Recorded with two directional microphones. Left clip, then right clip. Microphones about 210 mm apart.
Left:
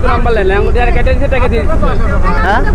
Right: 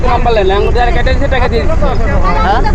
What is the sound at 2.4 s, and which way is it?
Speech, 50° left (ahead or behind).